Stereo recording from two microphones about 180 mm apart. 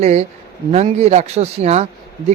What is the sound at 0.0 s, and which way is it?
Speech, 35° right (ahead or behind).